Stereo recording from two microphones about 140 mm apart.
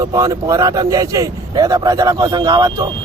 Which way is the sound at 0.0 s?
25° right (ahead or behind).